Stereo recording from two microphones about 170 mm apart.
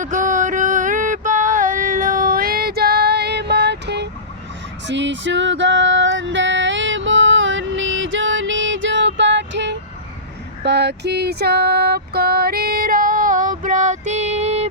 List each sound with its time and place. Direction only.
0.0 s a sound: 50° right (ahead or behind); by 4.1 s 85° right
4.9 s music: 90° right
10.6 s female singing: 80° right; by 14.7 s 40° right (ahead or behind)